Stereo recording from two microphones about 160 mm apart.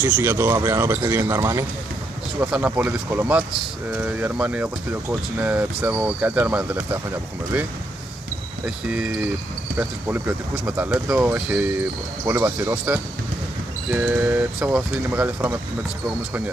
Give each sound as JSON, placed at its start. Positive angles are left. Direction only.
{"t": 0.0, "sound": "speech", "side_deg": -10}
{"t": 2.4, "sound": "speech", "side_deg": -5}
{"t": 8.6, "sound": "speech", "side_deg": -5}